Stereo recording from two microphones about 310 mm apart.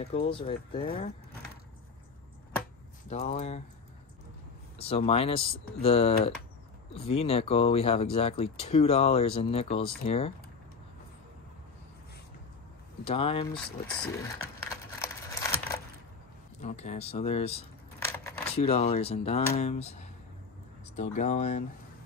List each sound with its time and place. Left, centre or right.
0.0 s speech: centre
3.1 s speech: left
4.7 s speech: centre
13.0 s speech: centre
14.0 s a sound: centre
16.6 s speech: left
17.9 s a sound: centre
18.6 s speech: centre